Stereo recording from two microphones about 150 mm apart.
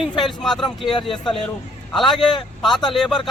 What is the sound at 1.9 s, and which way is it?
Speech, centre (ahead or behind).